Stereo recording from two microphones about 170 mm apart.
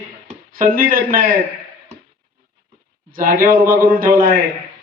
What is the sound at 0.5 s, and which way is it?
Speech, 55° right (ahead or behind).